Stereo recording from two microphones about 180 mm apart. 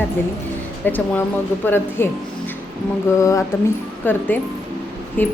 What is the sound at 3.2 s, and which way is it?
Speech, 15° left (ahead or behind).